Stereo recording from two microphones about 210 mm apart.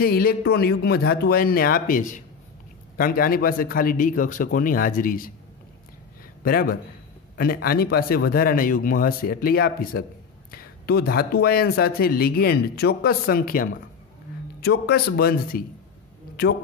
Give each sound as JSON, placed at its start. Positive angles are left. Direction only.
{"t": 0.0, "sound": "a man's voice", "side_deg": 45}
{"t": 6.4, "sound": "speech", "side_deg": 45}